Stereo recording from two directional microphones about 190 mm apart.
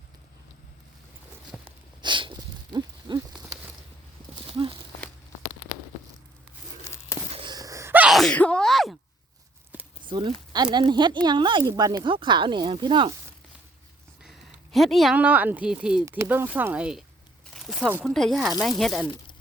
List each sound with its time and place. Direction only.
2.0 s a sound: 25° right (ahead or behind)
4.4 s horse: 30° right (ahead or behind)
7.3 s sneeze: 30° right (ahead or behind); by 9.0 s centre (ahead or behind)
10.1 s speech: 25° right (ahead or behind)
14.2 s speech: centre (ahead or behind)
17.5 s a sound: 5° right (ahead or behind)
18.1 s speech: centre (ahead or behind)